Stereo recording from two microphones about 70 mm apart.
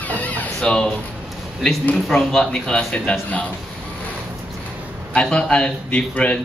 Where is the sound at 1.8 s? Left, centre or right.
Centre.